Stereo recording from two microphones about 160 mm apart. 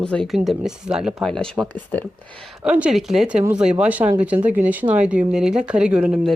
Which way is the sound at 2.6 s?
5° right (ahead or behind).